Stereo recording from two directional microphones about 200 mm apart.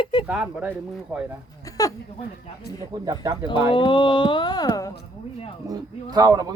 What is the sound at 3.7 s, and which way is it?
Speech, 25° left (ahead or behind).